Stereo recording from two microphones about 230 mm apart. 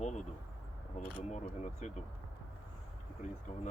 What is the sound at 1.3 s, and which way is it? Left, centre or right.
Speech, left.